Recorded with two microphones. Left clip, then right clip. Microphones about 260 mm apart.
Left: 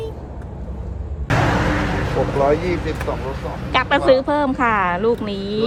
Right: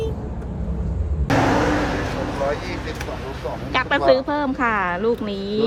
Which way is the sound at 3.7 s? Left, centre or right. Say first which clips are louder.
Left 2 dB; centre.